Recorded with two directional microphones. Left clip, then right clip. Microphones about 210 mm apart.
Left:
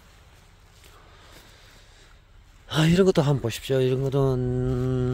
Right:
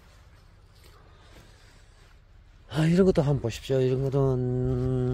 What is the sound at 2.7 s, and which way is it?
Speech, 20° left (ahead or behind).